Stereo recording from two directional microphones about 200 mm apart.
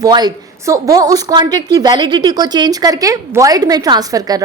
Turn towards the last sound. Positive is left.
turn(degrees=-20)  # may be behind; listen again after turning